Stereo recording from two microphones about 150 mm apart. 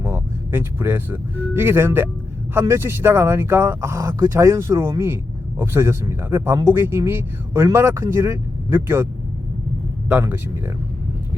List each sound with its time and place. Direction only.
0.0 s speech: 20° right (ahead or behind)
10.1 s speech: 15° right (ahead or behind)